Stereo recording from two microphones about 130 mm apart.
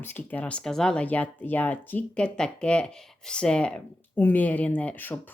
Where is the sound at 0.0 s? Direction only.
15° left (ahead or behind).